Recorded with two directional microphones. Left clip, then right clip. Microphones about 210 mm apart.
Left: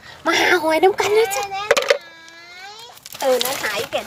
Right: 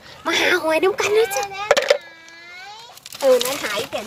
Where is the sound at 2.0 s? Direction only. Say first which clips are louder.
Even; 50° left (ahead or behind).